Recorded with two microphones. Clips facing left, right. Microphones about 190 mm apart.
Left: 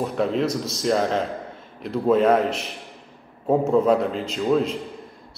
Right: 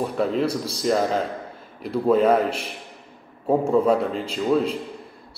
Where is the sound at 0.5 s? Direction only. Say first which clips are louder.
Even; 30° right (ahead or behind).